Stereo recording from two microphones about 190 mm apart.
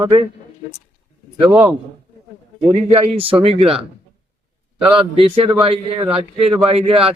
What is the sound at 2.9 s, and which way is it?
Speech, 30° right (ahead or behind).